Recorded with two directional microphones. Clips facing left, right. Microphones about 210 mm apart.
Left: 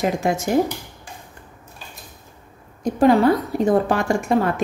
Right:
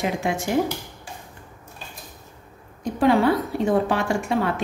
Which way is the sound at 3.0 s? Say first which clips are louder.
Left 3 dB; 45° left (ahead or behind).